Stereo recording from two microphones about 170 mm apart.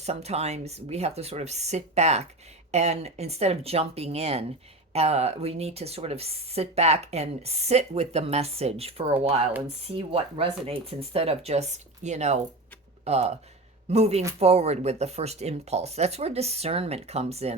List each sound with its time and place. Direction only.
0.0 s speech: 40° right (ahead or behind)